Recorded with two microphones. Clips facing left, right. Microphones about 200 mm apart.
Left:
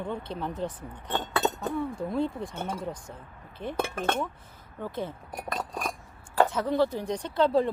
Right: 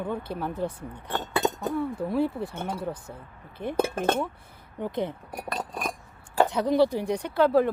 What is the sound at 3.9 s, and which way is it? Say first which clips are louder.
Speech: right 3 dB; 20° right (ahead or behind).